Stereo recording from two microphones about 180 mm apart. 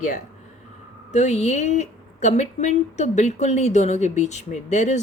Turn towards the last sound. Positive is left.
turn(degrees=40)  # may be behind; listen again after turning